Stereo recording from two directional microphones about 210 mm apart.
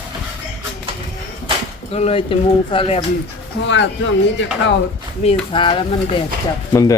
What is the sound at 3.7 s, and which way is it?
Speech, 60° left (ahead or behind).